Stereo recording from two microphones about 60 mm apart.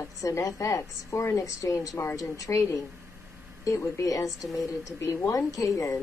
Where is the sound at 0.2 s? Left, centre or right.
Left.